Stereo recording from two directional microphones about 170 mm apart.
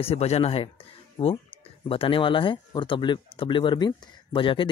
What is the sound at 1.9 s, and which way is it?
Speech, 30° left (ahead or behind).